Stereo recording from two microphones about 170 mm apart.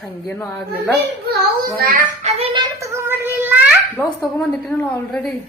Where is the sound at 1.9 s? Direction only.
45° right (ahead or behind).